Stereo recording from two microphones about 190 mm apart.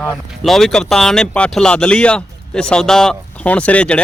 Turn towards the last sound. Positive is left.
turn(degrees=5)  # may be behind; listen again after turning